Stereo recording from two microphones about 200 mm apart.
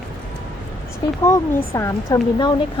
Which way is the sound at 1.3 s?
15° left (ahead or behind).